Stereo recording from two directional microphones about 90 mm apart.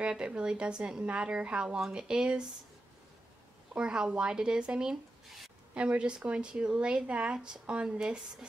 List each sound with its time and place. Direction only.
0.0 s speech: 10° right (ahead or behind)
3.7 s speech: 10° right (ahead or behind)